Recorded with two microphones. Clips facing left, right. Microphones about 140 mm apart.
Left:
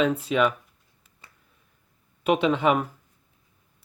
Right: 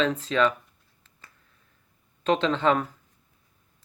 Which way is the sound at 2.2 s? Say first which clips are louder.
Left 1 dB; 10° left (ahead or behind).